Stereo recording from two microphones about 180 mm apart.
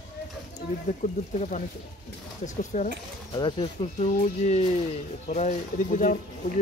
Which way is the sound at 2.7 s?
40° left (ahead or behind).